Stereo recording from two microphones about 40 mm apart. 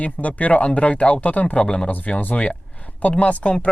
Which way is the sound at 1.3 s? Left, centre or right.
Left.